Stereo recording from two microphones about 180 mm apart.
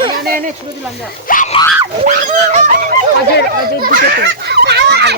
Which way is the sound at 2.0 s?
40° right (ahead or behind).